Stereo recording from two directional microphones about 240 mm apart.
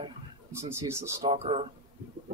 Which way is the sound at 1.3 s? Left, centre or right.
Right.